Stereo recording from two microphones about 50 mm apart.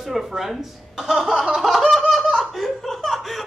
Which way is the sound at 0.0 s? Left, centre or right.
Centre.